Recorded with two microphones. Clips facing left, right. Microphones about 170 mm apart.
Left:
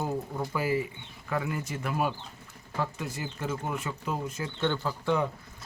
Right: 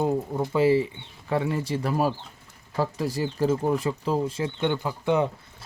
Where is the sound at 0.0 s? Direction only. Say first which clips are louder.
Right 7 dB; 25° right (ahead or behind).